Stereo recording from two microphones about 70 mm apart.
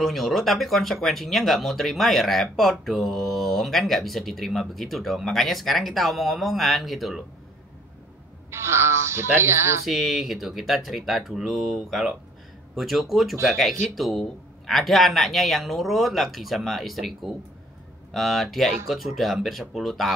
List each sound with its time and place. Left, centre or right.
0.0 s speech: centre
8.5 s speech: right
9.8 s speech: centre